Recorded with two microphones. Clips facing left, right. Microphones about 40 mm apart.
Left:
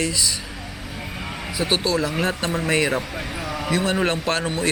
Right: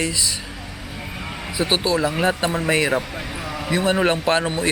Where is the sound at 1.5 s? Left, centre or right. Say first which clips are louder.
Right 1 dB; centre.